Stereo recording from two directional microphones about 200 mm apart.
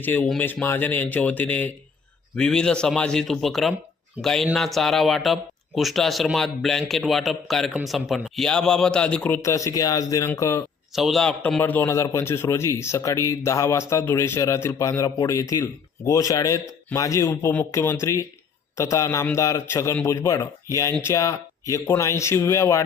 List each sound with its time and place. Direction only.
0.0 s a man's voice: 10° left (ahead or behind)
10.9 s a man's voice: centre (ahead or behind); by 22.8 s 15° left (ahead or behind)